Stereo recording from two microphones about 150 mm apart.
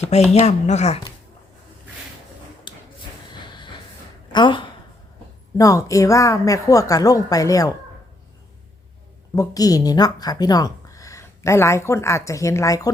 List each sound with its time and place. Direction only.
0.0 s speech: 45° left (ahead or behind)
2.7 s a sound: 35° left (ahead or behind)
3.4 s train: 30° left (ahead or behind)
4.3 s speech: 30° left (ahead or behind)
9.3 s speech: 25° left (ahead or behind)